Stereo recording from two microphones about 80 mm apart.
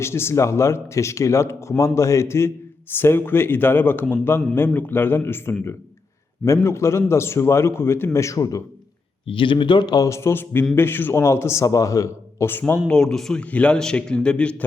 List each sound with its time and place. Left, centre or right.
0.0 s a man's voice: left
9.3 s speech: left
10.1 s a man's voice: left
12.9 s a man's voice: centre